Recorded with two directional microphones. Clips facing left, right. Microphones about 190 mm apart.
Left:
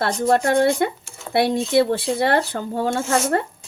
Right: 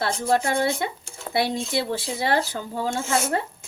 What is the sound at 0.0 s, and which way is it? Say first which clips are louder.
Speech: left 4 dB; 55° left (ahead or behind).